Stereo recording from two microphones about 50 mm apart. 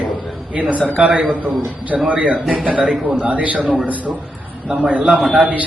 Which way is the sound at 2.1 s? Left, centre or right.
Centre.